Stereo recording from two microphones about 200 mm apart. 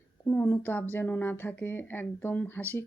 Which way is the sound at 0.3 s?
10° left (ahead or behind).